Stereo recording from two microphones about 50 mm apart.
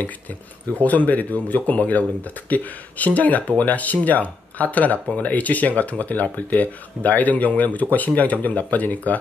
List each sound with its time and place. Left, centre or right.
0.8 s speech: left